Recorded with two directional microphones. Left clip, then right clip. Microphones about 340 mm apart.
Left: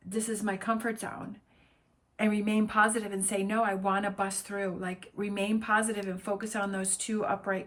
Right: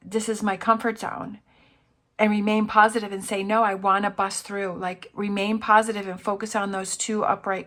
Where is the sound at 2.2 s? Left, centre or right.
Centre.